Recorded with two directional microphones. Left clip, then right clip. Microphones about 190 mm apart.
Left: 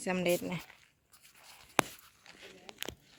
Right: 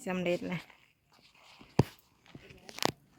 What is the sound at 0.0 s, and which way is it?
Speech, centre (ahead or behind).